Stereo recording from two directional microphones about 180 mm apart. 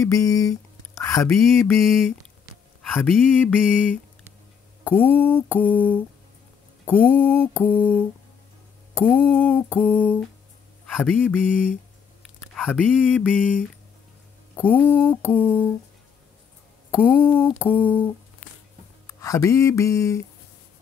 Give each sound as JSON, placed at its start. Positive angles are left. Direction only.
{"t": 0.0, "sound": "speech", "side_deg": 20}
{"t": 1.0, "sound": "mantra", "side_deg": 15}
{"t": 1.8, "sound": "speech", "side_deg": 0}
{"t": 4.8, "sound": "speech", "side_deg": 10}
{"t": 5.2, "sound": "mantra", "side_deg": 10}
{"t": 11.0, "sound": "speech", "side_deg": 0}
{"t": 14.5, "sound": "mantra", "side_deg": 10}
{"t": 17.0, "sound": "mantra", "side_deg": 10}
{"t": 19.0, "sound": "mantra", "side_deg": 20}